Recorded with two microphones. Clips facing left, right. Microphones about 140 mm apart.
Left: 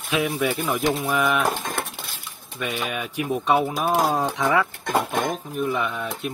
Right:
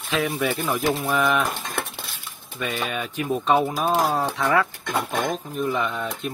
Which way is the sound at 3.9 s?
20° left (ahead or behind).